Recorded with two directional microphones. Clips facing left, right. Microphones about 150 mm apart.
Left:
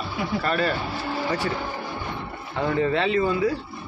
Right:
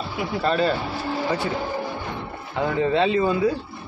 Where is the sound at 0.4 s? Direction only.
25° right (ahead or behind).